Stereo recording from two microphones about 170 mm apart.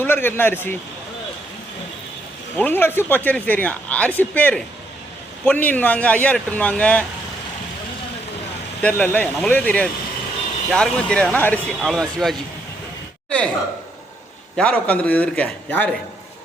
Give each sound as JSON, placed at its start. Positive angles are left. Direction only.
{"t": 0.0, "sound": "speech", "side_deg": 10}
{"t": 2.6, "sound": "speech", "side_deg": 10}
{"t": 8.8, "sound": "speech", "side_deg": 10}
{"t": 14.5, "sound": "speech", "side_deg": 5}